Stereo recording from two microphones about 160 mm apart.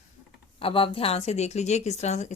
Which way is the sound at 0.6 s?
35° left (ahead or behind).